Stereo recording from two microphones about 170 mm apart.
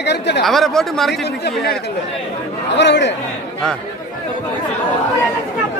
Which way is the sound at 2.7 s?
90° left.